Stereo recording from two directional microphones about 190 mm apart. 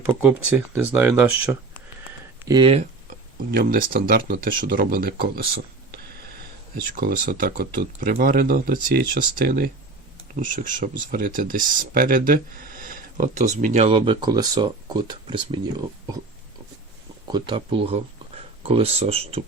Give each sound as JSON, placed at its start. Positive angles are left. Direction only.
{"t": 0.2, "sound": "speech", "side_deg": -10}
{"t": 2.5, "sound": "speech", "side_deg": -25}
{"t": 3.5, "sound": "speech", "side_deg": -50}
{"t": 6.9, "sound": "speech", "side_deg": -50}
{"t": 17.2, "sound": "speech", "side_deg": -25}